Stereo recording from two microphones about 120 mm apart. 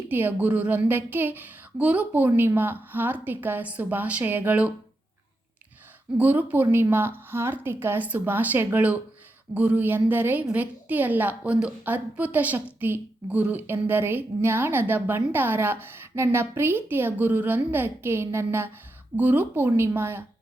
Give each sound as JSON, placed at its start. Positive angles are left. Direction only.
{"t": 0.1, "sound": "a woman's voice", "side_deg": -15}
{"t": 6.1, "sound": "a woman's voice", "side_deg": -15}